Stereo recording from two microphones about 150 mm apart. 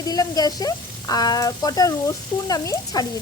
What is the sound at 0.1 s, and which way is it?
Speech, 25° left (ahead or behind).